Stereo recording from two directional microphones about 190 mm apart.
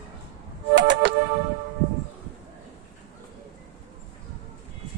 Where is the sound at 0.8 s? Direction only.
65° right (ahead or behind).